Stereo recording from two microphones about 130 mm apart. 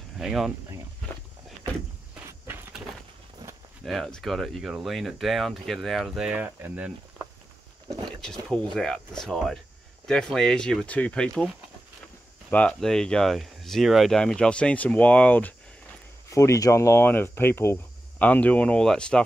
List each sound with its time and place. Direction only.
0.2 s speech: 5° right (ahead or behind)
2.5 s a sound: 15° right (ahead or behind)
3.8 s speech: centre (ahead or behind); by 7.2 s 15° right (ahead or behind)
8.2 s speech: 5° left (ahead or behind)
12.4 s speech: 10° left (ahead or behind)
16.3 s speech: 25° left (ahead or behind); by 19.2 s 5° left (ahead or behind)